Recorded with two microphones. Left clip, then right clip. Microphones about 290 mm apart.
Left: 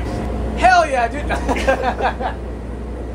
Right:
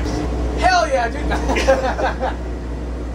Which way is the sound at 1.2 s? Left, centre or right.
Left.